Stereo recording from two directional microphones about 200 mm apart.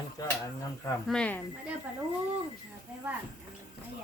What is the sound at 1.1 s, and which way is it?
Speech, 5° left (ahead or behind).